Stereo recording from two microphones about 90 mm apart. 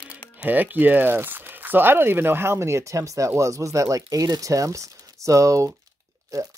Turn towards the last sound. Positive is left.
turn(degrees=-40)  # may be behind; listen again after turning